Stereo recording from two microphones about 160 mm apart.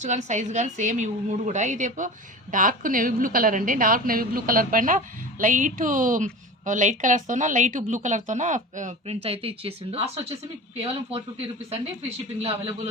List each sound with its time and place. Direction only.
0.0 s a woman's voice: 50° right (ahead or behind)